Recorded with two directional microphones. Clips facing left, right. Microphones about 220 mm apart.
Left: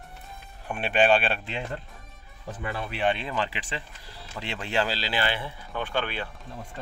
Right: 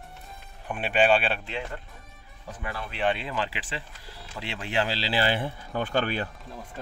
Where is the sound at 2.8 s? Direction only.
Centre (ahead or behind); by 5.0 s 15° right (ahead or behind).